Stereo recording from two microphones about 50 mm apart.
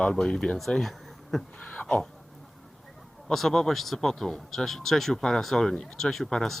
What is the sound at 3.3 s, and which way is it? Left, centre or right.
Speech, centre.